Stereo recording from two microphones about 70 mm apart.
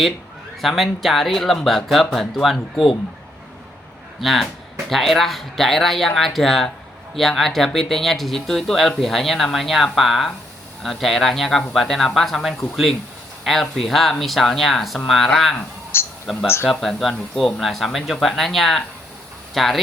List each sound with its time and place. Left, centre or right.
0.6 s speech: centre
4.2 s speech: centre
15.5 s speech: left
16.2 s speech: centre